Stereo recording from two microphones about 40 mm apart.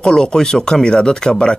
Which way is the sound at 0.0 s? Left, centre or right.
Centre.